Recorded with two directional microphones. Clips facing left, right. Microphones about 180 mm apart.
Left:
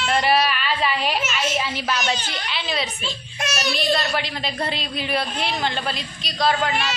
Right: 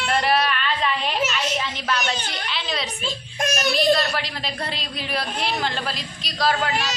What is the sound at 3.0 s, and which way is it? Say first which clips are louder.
Speech: right 3 dB; 50° right (ahead or behind).